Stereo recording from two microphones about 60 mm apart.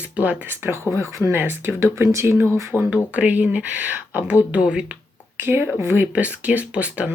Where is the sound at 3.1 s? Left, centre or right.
Right.